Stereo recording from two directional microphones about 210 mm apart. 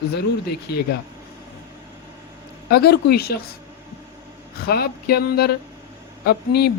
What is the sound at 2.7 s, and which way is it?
Speech, 50° left (ahead or behind).